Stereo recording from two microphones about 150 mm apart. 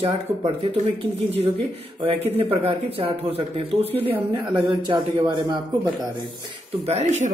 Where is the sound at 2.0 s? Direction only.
40° right (ahead or behind).